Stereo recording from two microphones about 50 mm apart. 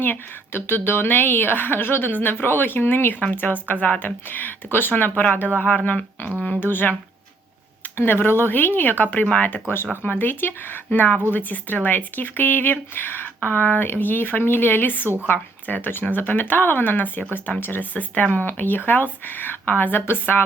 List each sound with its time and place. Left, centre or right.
0.0 s a woman's voice: left
6.6 s a woman's voice: left
7.9 s a woman's voice: left
17.9 s a woman's voice: left